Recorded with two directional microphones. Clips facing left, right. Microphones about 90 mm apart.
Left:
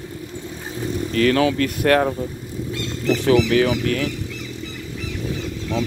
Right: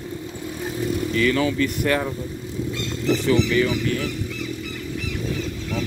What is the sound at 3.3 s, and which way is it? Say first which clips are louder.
Speech: left 5 dB; 75° left (ahead or behind).